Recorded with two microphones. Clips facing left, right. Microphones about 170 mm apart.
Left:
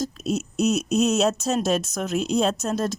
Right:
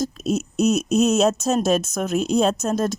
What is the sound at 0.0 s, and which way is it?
Speech, 45° right (ahead or behind).